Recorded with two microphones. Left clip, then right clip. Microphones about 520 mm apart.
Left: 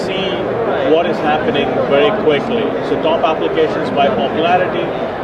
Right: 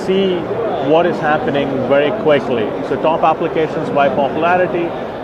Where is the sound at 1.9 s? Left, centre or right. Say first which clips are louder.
Even; right.